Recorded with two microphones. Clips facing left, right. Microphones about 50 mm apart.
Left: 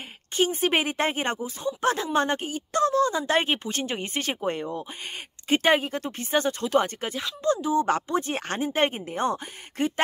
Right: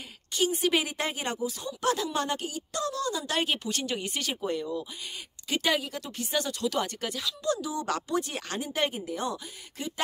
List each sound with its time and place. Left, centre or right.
0.3 s speech: left